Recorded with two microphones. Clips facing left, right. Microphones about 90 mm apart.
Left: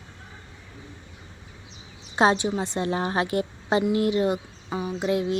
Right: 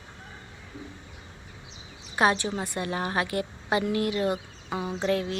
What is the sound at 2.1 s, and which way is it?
Speech, 25° left (ahead or behind).